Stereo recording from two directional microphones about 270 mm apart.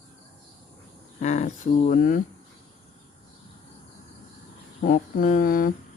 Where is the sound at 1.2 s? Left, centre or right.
Left.